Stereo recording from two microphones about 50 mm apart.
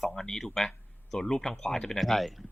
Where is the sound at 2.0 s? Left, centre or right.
Centre.